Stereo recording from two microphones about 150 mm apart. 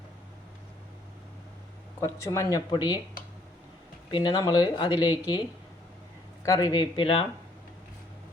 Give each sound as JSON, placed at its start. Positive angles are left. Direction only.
{"t": 2.0, "sound": "speech", "side_deg": 20}
{"t": 4.1, "sound": "speech", "side_deg": 30}